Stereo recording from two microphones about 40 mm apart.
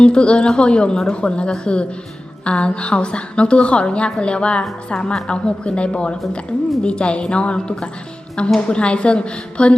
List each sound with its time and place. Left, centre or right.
0.0 s a woman's voice: left